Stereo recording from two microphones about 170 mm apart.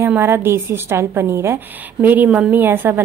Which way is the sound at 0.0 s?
15° right (ahead or behind).